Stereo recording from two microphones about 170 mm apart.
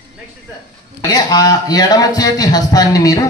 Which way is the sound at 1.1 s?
25° left (ahead or behind).